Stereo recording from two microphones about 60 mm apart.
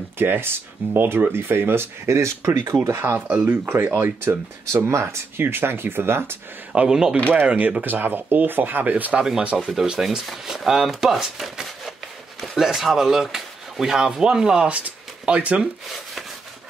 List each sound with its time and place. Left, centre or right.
0.2 s speech: right
3.2 s speech: right
3.6 s speech: right
5.4 s speech: right
6.7 s speech: centre
7.3 s speech: right
9.7 s speech: centre